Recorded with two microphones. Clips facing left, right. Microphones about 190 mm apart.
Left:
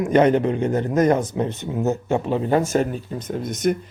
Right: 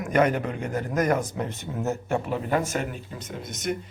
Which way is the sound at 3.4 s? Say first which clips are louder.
Left 8 dB; 55° left (ahead or behind).